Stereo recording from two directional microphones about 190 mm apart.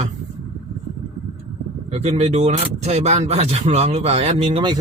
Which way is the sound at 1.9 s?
35° right (ahead or behind).